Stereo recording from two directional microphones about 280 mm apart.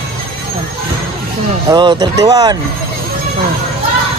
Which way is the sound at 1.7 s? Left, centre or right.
Centre.